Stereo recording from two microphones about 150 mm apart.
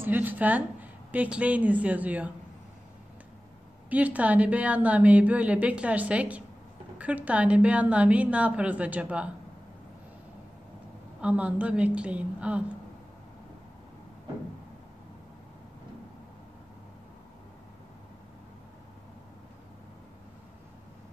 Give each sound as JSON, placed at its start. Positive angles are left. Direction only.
{"t": 0.0, "sound": "a woman's voice", "side_deg": -15}
{"t": 3.9, "sound": "a woman's voice", "side_deg": -10}
{"t": 11.1, "sound": "a woman's voice", "side_deg": -10}